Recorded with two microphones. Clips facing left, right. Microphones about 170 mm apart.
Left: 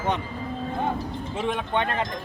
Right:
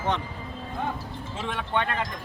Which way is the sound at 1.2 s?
15° left (ahead or behind).